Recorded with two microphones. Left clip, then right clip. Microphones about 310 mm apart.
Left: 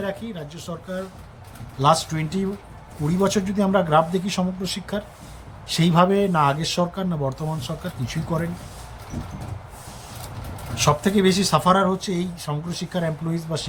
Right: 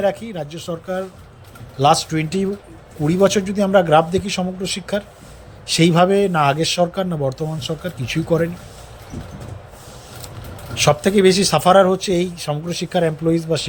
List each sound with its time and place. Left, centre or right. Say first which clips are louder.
0.0 s speech: right 9 dB; centre
10.8 s speech: right 5 dB; centre